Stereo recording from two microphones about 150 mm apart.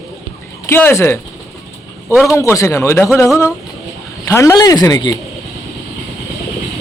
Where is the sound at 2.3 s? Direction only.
20° left (ahead or behind).